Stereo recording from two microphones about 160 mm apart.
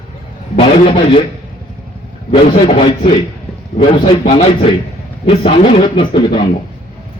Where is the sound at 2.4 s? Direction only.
40° left (ahead or behind).